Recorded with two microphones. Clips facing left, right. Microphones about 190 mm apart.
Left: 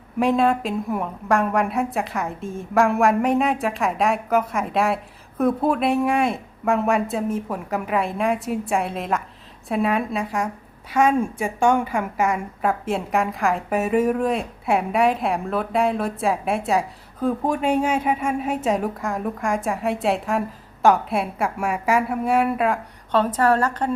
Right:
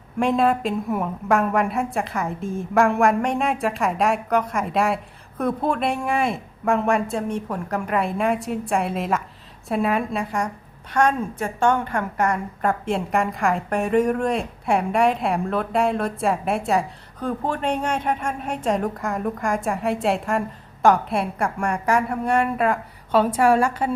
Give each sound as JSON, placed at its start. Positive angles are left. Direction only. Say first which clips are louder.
{"t": 0.2, "sound": "a woman's voice", "louder": "left 1 dB", "side_deg": 0}